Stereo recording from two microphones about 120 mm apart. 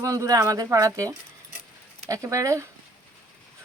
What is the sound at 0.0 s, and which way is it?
Speech, 30° right (ahead or behind).